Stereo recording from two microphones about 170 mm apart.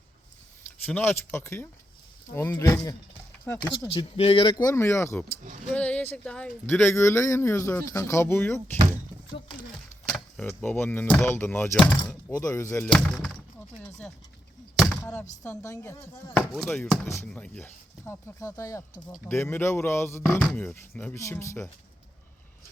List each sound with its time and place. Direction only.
0.9 s speech: 10° left (ahead or behind)
3.9 s speech: 35° left (ahead or behind); by 5.2 s 15° left (ahead or behind)
5.7 s a sound: 10° left (ahead or behind)
6.2 s speech: 10° left (ahead or behind)
10.4 s speech: 10° left (ahead or behind)
12.3 s speech: 20° left (ahead or behind)
12.9 s speech: 5° left (ahead or behind)
14.8 s a sound: 15° left (ahead or behind)
15.4 s speech: 15° left (ahead or behind)